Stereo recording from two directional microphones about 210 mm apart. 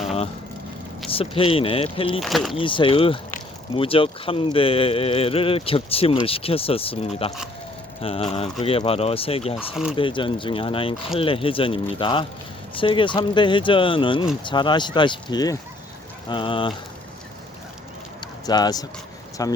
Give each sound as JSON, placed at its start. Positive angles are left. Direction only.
{"t": 1.1, "sound": "speech", "side_deg": 25}
{"t": 2.2, "sound": "speech", "side_deg": 0}
{"t": 2.6, "sound": "speech", "side_deg": 25}
{"t": 18.2, "sound": "a sound", "side_deg": 20}
{"t": 19.4, "sound": "speech", "side_deg": 15}